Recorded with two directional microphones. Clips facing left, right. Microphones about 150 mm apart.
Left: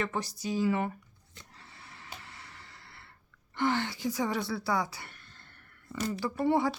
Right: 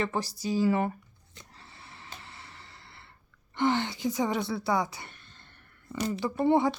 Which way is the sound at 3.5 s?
20° right (ahead or behind).